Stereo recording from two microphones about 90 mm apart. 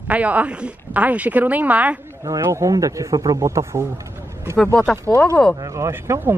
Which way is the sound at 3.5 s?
35° right (ahead or behind).